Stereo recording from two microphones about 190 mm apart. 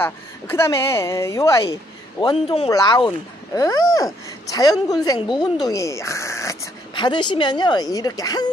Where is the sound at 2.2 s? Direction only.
30° left (ahead or behind).